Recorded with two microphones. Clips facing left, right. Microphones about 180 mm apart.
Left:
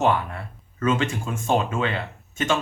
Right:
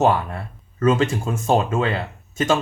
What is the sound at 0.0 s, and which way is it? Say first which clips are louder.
Speech: right 3 dB; 35° right (ahead or behind).